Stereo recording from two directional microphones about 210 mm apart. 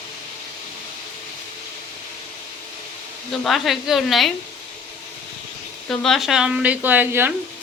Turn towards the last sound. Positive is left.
turn(degrees=-10)  # may be behind; listen again after turning